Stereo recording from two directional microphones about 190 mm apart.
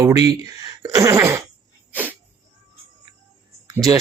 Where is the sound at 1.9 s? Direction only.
10° right (ahead or behind).